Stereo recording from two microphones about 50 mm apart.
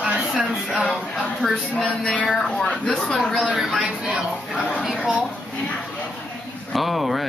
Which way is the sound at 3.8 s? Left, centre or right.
Right.